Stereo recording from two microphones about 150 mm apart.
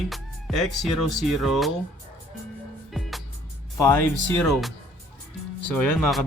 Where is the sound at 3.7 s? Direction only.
15° left (ahead or behind).